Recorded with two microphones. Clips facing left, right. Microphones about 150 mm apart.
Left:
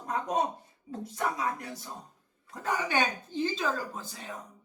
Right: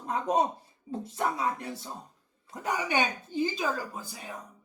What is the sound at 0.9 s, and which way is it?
Speech, 25° right (ahead or behind).